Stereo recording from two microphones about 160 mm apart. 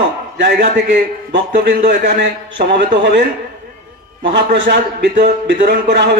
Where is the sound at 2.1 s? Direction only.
90° right.